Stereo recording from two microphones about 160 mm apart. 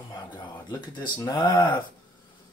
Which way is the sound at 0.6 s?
30° left (ahead or behind).